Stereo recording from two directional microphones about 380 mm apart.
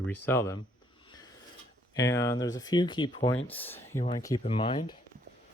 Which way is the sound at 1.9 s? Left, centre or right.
Centre.